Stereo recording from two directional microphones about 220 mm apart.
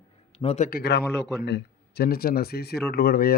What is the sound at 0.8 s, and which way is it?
A man's voice, 50° left (ahead or behind).